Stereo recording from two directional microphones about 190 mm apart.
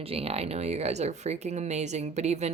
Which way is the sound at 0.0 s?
30° right (ahead or behind).